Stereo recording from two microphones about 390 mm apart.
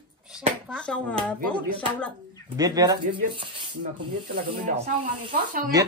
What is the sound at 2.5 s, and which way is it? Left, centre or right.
Speech, centre.